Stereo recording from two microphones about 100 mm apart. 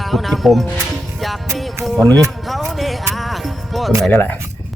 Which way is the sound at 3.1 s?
Centre (ahead or behind).